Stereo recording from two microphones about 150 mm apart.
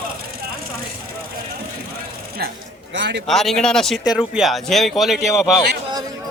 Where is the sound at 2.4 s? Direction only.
90° right.